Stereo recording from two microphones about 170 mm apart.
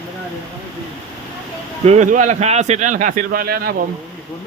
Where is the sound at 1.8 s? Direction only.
45° right (ahead or behind); by 3.7 s 65° right (ahead or behind).